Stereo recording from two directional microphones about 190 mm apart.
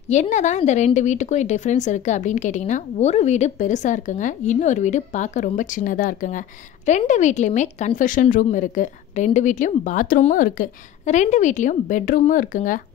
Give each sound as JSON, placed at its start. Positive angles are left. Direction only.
{"t": 0.1, "sound": "speech", "side_deg": 40}